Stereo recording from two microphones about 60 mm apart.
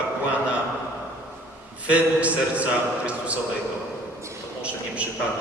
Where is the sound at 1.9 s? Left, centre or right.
Right.